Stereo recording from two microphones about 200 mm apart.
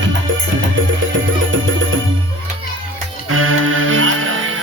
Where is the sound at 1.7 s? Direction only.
75° right (ahead or behind).